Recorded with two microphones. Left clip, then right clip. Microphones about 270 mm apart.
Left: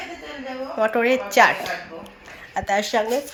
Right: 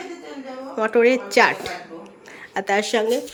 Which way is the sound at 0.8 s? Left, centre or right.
Centre.